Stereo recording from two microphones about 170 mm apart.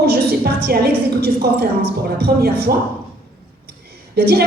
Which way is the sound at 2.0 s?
65° right (ahead or behind).